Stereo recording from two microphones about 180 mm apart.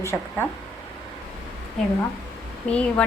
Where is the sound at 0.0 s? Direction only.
15° left (ahead or behind).